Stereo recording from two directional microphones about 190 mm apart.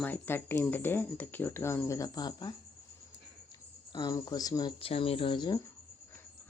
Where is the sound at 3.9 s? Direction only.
20° left (ahead or behind).